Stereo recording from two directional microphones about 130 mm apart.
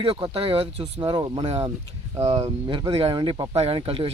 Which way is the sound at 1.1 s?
35° right (ahead or behind).